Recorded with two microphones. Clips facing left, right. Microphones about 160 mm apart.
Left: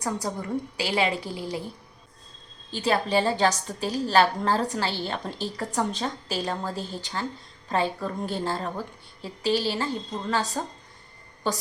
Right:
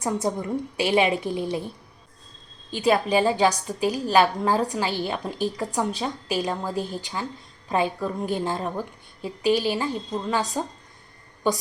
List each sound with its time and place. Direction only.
0.0 s a woman's voice: 25° right (ahead or behind)
2.6 s a woman's voice: 15° right (ahead or behind)